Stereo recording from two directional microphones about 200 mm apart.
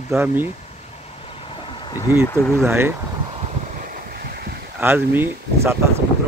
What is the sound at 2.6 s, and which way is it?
Speech, 10° right (ahead or behind).